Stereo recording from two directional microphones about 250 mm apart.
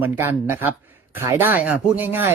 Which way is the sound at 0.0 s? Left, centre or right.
Centre.